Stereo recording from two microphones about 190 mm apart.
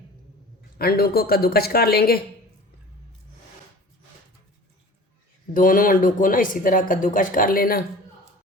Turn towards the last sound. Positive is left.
turn(degrees=50)  # may be behind; listen again after turning